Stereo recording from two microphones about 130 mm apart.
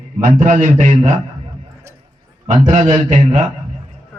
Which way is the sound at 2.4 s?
70° right (ahead or behind).